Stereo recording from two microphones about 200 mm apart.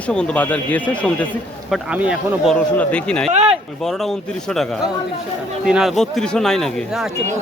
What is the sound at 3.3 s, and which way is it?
Speech, 30° right (ahead or behind).